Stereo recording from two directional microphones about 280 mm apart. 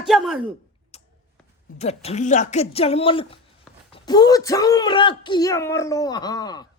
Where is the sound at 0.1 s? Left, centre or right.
Centre.